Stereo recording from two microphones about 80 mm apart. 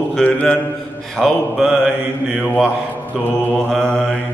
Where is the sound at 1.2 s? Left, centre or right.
Centre.